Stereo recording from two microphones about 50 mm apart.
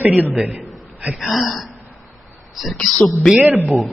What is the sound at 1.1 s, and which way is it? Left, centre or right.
A woman's voice, centre.